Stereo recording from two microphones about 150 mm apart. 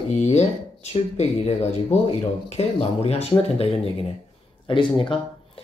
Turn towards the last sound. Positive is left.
turn(degrees=35)  # may be behind; listen again after turning